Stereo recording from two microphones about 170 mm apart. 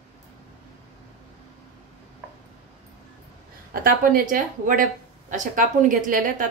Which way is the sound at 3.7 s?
55° right (ahead or behind).